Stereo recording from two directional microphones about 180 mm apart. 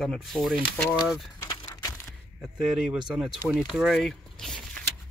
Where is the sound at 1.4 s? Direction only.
25° left (ahead or behind).